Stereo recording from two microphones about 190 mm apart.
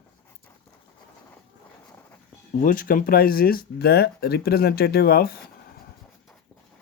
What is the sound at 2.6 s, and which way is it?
Speech, 45° left (ahead or behind).